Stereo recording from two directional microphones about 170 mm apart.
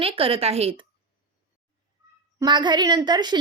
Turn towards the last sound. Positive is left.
turn(degrees=-25)  # may be behind; listen again after turning